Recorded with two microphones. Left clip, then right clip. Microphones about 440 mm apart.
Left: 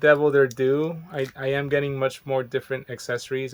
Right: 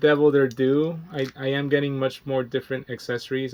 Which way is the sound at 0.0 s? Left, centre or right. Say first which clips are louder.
Left 1 dB; centre.